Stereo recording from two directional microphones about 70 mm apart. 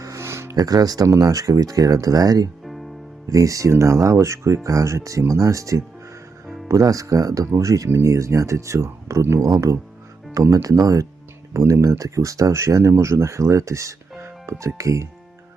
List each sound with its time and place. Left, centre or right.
0.0 s music: right
0.5 s speech: right
1.2 s speech: right
3.3 s speech: right
9.5 s speech: right
11.5 s speech: right